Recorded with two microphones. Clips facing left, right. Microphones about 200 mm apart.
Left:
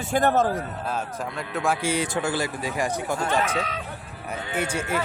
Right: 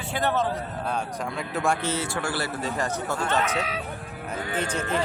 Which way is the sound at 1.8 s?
15° left (ahead or behind).